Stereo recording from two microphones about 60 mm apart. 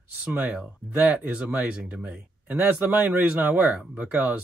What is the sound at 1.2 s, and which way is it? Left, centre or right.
Speech, right.